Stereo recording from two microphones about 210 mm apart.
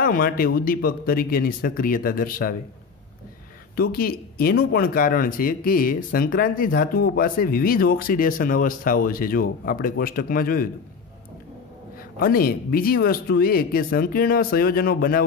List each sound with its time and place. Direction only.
0.0 s speech: 45° left (ahead or behind)
3.7 s speech: 45° left (ahead or behind)
12.2 s speech: 45° left (ahead or behind)